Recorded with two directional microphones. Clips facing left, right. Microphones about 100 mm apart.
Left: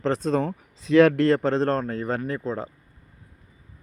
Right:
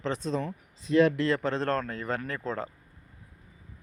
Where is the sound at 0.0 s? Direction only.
40° left (ahead or behind).